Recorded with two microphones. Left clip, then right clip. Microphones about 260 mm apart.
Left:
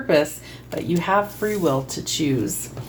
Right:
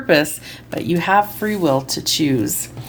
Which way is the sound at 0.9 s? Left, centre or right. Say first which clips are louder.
Right 5 dB; right.